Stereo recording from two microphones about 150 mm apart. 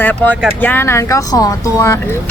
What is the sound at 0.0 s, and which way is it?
Speech, 10° left (ahead or behind).